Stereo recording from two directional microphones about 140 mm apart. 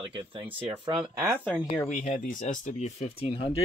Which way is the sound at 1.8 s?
65° left (ahead or behind).